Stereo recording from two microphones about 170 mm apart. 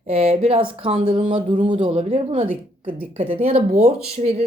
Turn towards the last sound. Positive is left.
turn(degrees=-40)  # may be behind; listen again after turning